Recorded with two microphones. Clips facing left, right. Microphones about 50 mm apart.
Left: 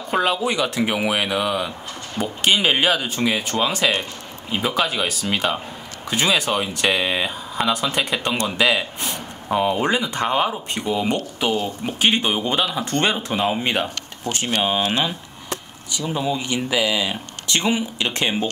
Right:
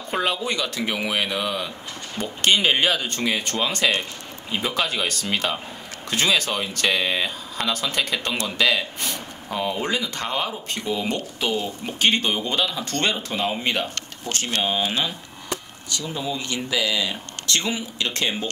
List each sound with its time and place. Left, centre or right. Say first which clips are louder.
0.1 s speech: left 4 dB; centre
0.6 s speech: left 5 dB; centre
16.1 s speech: left 6 dB; centre